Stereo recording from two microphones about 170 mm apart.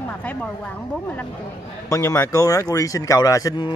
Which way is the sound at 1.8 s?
20° left (ahead or behind).